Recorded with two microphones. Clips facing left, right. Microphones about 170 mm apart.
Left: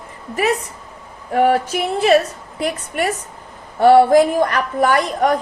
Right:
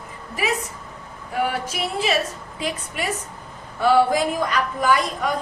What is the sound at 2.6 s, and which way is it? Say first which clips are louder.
A woman's voice: left 7 dB; 65° left (ahead or behind).